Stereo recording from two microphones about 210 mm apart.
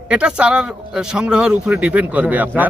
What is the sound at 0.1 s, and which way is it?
A man's voice, 5° right (ahead or behind).